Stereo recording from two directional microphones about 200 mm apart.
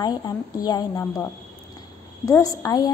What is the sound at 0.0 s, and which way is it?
A woman's voice, 20° left (ahead or behind).